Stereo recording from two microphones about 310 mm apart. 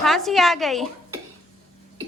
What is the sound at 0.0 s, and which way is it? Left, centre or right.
Speech, centre.